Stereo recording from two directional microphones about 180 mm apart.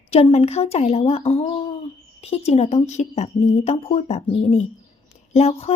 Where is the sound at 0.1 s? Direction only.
35° left (ahead or behind).